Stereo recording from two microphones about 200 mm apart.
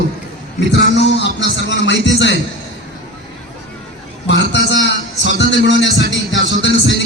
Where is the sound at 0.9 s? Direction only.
60° left (ahead or behind).